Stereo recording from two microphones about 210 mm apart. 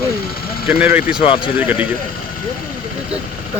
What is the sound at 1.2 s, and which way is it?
Speech, 25° left (ahead or behind).